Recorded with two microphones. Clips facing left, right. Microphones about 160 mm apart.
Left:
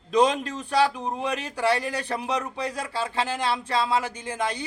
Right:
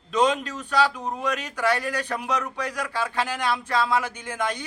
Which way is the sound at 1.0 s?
25° left (ahead or behind).